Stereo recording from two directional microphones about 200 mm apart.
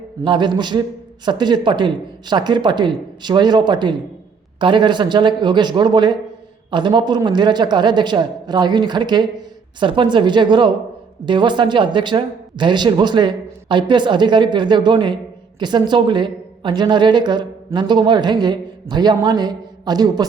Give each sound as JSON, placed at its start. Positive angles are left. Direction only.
{"t": 0.2, "sound": "speech", "side_deg": -20}